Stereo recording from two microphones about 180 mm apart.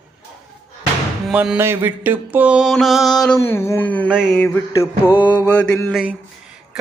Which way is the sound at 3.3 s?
15° left (ahead or behind).